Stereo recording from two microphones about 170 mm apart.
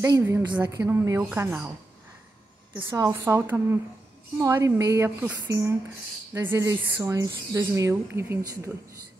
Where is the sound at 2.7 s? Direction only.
25° right (ahead or behind).